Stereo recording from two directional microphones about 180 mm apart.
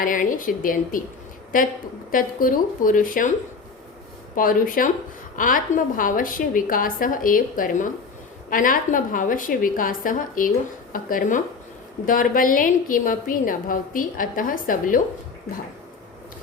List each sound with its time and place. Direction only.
0.0 s a woman's voice: 50° left (ahead or behind)
4.4 s a woman's voice: 50° left (ahead or behind)